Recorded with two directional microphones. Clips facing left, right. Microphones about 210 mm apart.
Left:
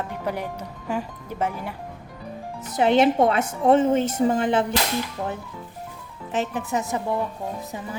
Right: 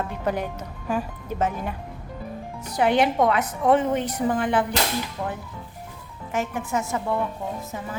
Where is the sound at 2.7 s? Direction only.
25° left (ahead or behind).